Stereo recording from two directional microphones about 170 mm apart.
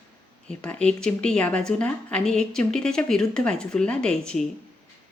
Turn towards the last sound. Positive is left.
turn(degrees=5)  # may be behind; listen again after turning